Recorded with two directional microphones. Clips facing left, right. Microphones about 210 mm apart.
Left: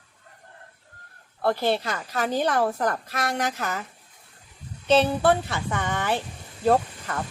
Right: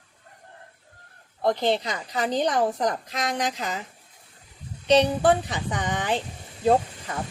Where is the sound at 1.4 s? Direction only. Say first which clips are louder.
Right 1 dB; 15° right (ahead or behind).